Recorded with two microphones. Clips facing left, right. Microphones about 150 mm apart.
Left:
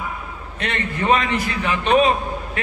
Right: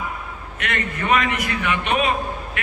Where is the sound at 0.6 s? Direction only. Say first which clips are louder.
Left 2 dB; 30° left (ahead or behind).